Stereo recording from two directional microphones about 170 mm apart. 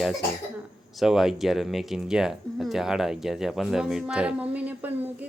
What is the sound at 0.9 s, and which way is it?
Speech, centre (ahead or behind).